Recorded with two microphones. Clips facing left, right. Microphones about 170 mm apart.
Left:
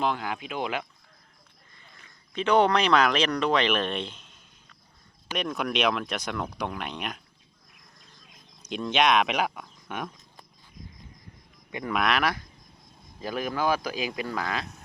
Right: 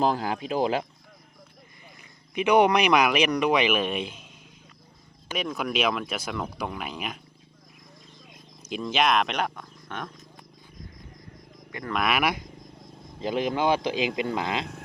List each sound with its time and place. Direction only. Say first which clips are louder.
0.0 s speech: right 4 dB; 35° right (ahead or behind)
2.0 s speech: right 3 dB; 10° right (ahead or behind)
5.4 s speech: even; centre (ahead or behind)
8.6 s speech: left 1 dB; 5° right (ahead or behind)
11.9 s speech: even; centre (ahead or behind); by 14.7 s 25° right (ahead or behind)